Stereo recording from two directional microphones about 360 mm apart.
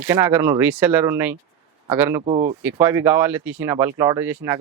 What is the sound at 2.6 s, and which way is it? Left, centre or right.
Speech, centre.